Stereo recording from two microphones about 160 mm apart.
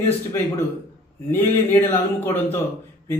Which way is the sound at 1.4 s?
15° left (ahead or behind).